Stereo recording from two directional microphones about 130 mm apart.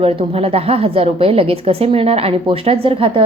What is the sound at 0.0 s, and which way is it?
A woman's voice, 45° right (ahead or behind).